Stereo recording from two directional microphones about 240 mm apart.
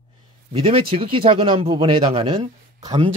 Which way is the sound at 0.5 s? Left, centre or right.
Right.